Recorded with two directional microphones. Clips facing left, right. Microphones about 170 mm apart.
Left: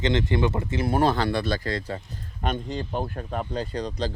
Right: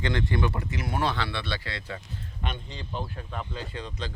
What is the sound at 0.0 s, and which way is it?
Speech, 20° left (ahead or behind).